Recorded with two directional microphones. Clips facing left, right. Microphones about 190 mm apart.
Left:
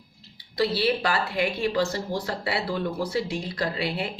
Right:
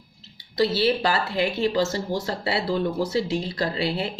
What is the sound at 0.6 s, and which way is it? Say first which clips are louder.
Speech: right 3 dB; 25° right (ahead or behind).